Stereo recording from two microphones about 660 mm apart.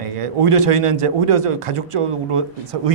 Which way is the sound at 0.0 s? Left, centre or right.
Right.